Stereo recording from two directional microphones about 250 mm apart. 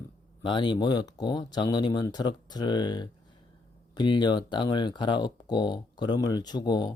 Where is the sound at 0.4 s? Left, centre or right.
Centre.